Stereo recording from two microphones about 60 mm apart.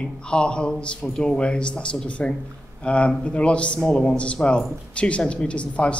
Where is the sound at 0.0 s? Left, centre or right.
Centre.